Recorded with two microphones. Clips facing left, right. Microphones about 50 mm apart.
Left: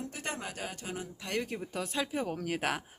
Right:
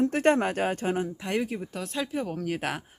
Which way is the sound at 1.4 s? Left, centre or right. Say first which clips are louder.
Right 4 dB; centre.